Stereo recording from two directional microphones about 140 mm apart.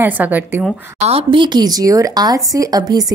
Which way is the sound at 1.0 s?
40° right (ahead or behind).